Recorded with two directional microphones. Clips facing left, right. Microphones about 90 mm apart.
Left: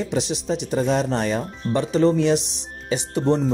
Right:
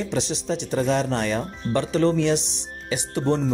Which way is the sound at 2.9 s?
20° left (ahead or behind).